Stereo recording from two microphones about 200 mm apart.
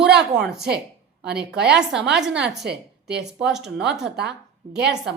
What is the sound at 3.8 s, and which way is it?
Speech, 60° right (ahead or behind).